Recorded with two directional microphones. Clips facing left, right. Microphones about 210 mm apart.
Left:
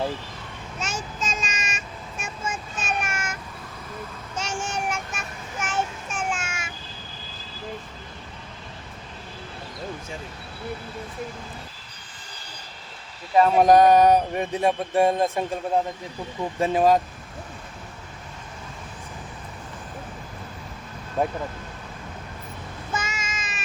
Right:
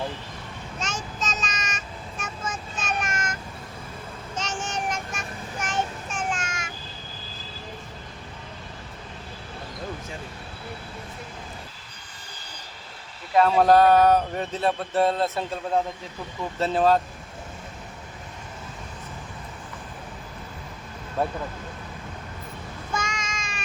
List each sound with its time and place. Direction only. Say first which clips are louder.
0.8 s child singing: left 1 dB; 10° left (ahead or behind)
4.4 s child singing: left 1 dB; 10° left (ahead or behind)
13.3 s speech: left 1 dB; 15° left (ahead or behind)
21.2 s speech: left 2 dB; 15° left (ahead or behind)
22.9 s a sound: even; 5° left (ahead or behind)